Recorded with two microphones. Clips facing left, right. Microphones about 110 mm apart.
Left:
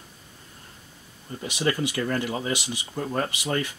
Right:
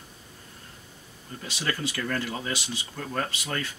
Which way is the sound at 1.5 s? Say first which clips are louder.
Left 6 dB; 15° left (ahead or behind).